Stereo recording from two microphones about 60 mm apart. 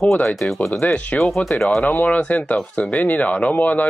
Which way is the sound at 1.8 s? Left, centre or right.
Left.